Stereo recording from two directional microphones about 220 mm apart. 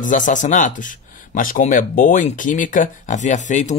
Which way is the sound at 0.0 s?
35° left (ahead or behind).